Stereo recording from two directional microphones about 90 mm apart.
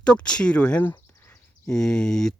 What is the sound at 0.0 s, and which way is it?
Speech, 10° left (ahead or behind).